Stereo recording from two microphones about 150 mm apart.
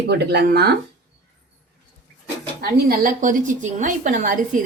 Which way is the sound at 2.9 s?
65° right (ahead or behind).